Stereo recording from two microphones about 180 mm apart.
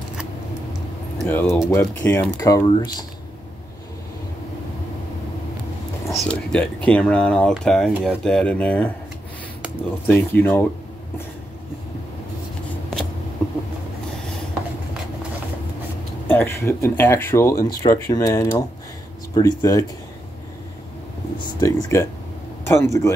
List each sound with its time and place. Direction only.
1.2 s speech: 10° left (ahead or behind)
6.0 s speech: centre (ahead or behind)
10.0 s speech: 10° left (ahead or behind)
16.3 s speech: 10° left (ahead or behind)
21.4 s speech: 20° left (ahead or behind)